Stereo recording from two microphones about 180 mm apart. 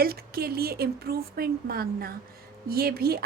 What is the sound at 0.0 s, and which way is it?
Speech, 55° right (ahead or behind).